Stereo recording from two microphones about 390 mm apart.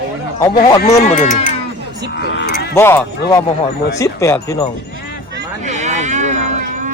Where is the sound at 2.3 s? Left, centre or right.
Left.